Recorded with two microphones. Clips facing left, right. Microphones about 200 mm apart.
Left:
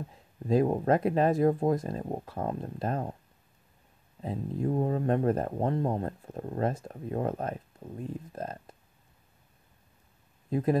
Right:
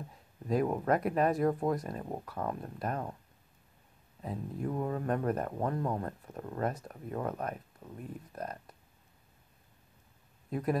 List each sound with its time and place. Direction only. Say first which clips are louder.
0.5 s speech: left 4 dB; 30° left (ahead or behind)
4.2 s speech: left 5 dB; 25° left (ahead or behind)
10.5 s speech: left 5 dB; 25° left (ahead or behind)